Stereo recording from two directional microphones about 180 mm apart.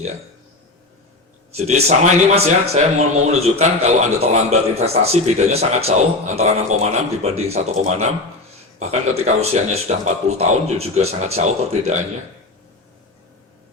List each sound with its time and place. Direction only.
1.5 s a man's voice: 35° right (ahead or behind)